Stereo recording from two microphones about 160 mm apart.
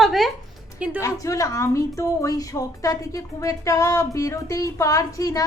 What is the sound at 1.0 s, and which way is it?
Speech, 20° left (ahead or behind).